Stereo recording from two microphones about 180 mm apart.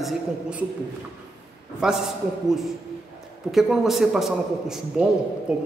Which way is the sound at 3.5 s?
Centre (ahead or behind).